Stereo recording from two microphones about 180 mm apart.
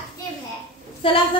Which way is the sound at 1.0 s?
30° left (ahead or behind).